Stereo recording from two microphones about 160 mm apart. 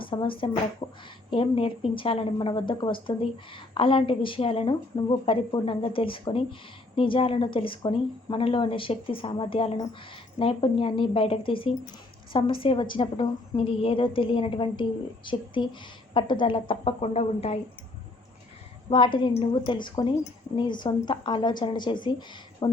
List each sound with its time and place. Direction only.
0.0 s a woman's voice: 30° left (ahead or behind)
18.9 s a woman's voice: 30° left (ahead or behind)